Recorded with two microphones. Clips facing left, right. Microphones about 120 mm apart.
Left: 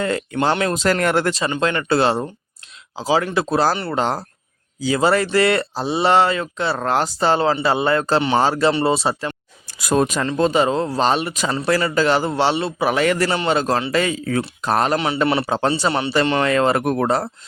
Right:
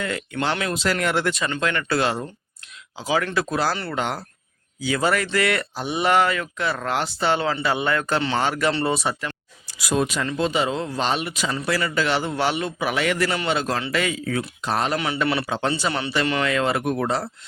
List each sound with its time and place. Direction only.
0.0 s speech: 35° left (ahead or behind)
1.6 s speech: 30° left (ahead or behind)
9.6 s speech: 45° left (ahead or behind)
14.9 s speech: 25° left (ahead or behind); by 17.3 s 50° left (ahead or behind)